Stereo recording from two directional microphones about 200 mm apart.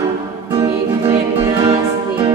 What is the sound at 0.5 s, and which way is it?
Music, 25° right (ahead or behind).